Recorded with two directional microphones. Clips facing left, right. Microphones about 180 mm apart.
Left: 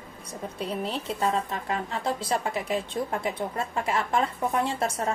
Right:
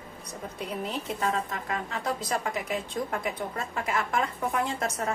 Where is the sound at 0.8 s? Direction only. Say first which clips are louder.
Left 1 dB; 30° left (ahead or behind).